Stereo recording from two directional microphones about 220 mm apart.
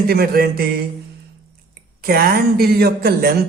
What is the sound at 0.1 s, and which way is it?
Speech, 45° right (ahead or behind).